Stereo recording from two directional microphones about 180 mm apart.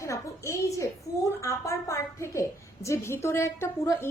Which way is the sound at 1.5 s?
15° left (ahead or behind).